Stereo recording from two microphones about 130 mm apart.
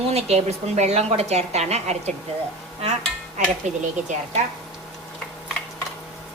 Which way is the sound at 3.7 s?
60° right (ahead or behind).